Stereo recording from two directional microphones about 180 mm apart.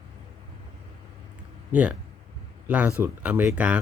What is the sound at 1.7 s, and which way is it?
Speech, 10° right (ahead or behind).